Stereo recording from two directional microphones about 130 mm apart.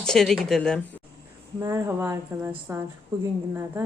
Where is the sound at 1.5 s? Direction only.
20° right (ahead or behind).